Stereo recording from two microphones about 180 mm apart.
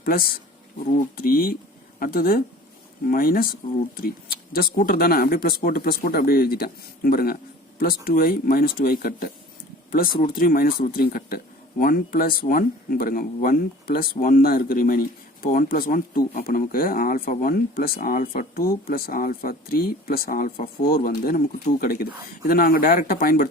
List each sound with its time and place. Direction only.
0.0 s speech: 55° left (ahead or behind)